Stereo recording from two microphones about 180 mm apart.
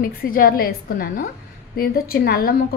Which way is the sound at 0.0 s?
55° left (ahead or behind).